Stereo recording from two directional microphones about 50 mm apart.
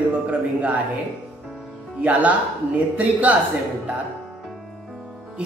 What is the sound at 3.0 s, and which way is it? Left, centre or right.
Speech, right.